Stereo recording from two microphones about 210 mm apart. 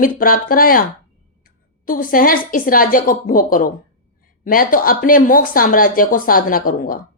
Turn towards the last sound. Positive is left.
turn(degrees=40)  # may be behind; listen again after turning